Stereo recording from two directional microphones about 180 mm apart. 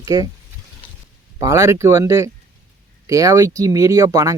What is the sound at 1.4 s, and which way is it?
Speech, 15° right (ahead or behind).